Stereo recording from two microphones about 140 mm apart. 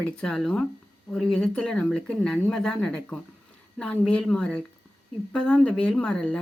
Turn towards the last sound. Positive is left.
turn(degrees=10)  # may be behind; listen again after turning